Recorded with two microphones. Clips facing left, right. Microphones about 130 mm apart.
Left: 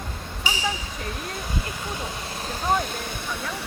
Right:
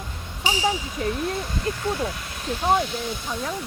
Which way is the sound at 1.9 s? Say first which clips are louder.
Right 4 dB; 25° left (ahead or behind).